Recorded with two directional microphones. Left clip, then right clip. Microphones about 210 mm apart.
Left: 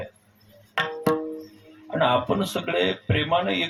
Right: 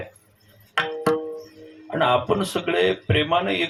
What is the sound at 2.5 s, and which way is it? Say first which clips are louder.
Speech: right 3 dB; 30° right (ahead or behind).